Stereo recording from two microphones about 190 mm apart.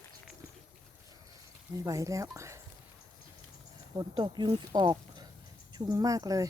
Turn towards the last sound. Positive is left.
turn(degrees=-20)  # may be behind; listen again after turning